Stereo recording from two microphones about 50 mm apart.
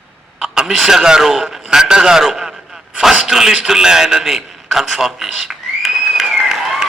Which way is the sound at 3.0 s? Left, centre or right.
Centre.